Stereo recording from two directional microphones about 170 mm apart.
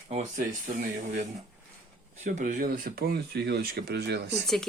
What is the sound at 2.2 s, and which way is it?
Speech, 50° right (ahead or behind).